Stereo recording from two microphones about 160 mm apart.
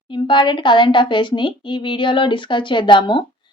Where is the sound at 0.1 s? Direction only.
30° left (ahead or behind).